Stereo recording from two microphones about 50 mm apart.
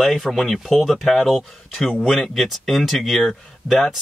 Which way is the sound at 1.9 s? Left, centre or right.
Centre.